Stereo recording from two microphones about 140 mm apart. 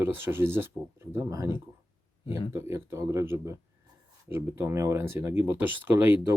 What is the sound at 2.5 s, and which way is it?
Speech, 20° right (ahead or behind).